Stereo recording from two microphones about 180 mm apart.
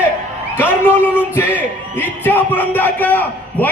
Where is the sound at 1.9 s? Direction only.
10° left (ahead or behind).